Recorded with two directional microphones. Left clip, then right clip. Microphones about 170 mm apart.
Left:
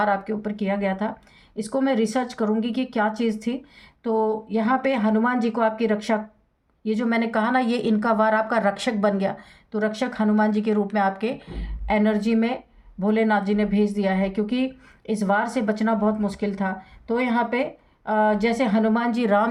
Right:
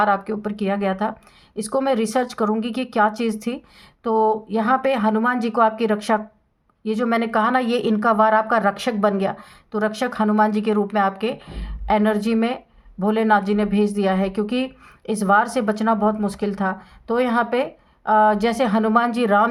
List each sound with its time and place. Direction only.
0.0 s speech: 40° right (ahead or behind)